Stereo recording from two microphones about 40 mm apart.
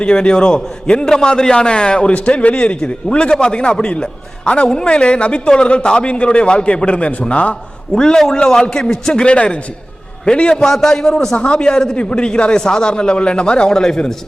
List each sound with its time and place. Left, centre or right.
0.0 s a man's voice: left
7.9 s a man's voice: centre
10.5 s a man's voice: centre
11.3 s a man's voice: left